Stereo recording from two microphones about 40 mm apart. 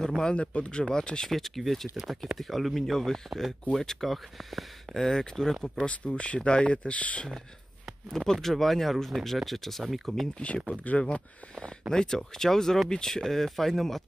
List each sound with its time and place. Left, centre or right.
0.0 s speech: centre
0.4 s speech: left
1.3 s speech: centre
2.0 s speech: centre
2.3 s speech: centre
5.0 s speech: centre
5.9 s speech: left
8.1 s speech: centre
10.7 s speech: left
11.9 s speech: centre